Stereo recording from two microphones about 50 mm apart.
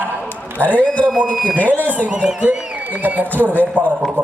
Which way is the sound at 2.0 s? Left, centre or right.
Right.